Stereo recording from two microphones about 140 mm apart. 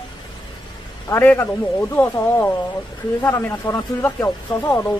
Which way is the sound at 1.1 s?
15° left (ahead or behind).